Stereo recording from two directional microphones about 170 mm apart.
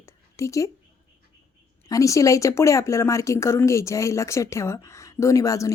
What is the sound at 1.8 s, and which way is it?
Speech, 20° left (ahead or behind).